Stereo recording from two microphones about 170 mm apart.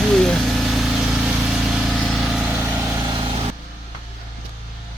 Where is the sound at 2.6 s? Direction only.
15° right (ahead or behind).